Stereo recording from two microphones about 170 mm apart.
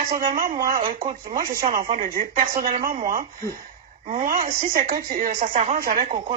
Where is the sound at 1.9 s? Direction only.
45° right (ahead or behind).